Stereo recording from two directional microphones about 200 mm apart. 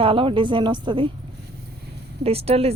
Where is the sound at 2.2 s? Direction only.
30° right (ahead or behind).